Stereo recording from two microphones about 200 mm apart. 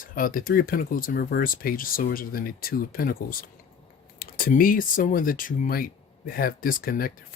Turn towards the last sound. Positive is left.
turn(degrees=45)  # may be behind; listen again after turning